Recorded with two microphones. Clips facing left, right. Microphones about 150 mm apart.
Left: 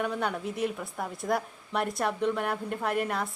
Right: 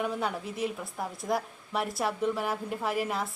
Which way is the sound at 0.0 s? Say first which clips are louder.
Left 1 dB; 5° right (ahead or behind).